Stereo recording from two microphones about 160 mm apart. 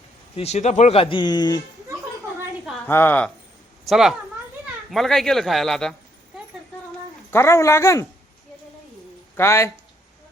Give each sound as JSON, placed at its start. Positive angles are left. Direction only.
{"t": 0.3, "sound": "speech", "side_deg": 45}
{"t": 2.8, "sound": "speech", "side_deg": 10}
{"t": 3.8, "sound": "speech", "side_deg": 0}
{"t": 7.3, "sound": "speech", "side_deg": 15}
{"t": 9.3, "sound": "speech", "side_deg": 15}